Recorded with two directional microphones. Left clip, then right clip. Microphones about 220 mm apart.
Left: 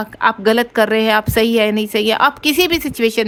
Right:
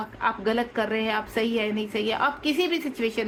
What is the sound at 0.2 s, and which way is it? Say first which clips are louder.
A woman's voice: left 11 dB; 55° left (ahead or behind).